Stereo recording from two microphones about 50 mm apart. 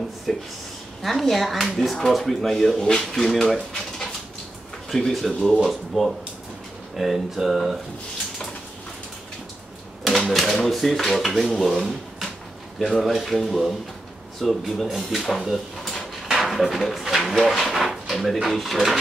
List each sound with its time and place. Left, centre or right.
0.3 s speech: centre
10.0 s speech: centre
15.4 s drawer open or close: centre
17.2 s speech: centre